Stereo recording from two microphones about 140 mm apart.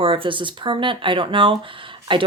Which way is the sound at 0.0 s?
40° right (ahead or behind).